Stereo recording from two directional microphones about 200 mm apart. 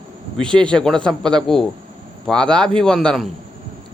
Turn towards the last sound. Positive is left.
turn(degrees=0)  # may be behind; listen again after turning